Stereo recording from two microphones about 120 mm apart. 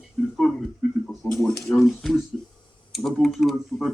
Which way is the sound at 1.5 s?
5° left (ahead or behind).